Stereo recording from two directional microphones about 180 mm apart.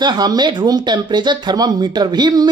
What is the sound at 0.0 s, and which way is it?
Speech, 20° right (ahead or behind).